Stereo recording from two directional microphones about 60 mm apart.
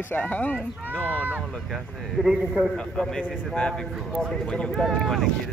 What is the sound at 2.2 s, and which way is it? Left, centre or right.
Speech, centre.